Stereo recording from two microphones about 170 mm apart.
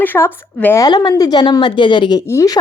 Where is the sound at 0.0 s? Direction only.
10° left (ahead or behind).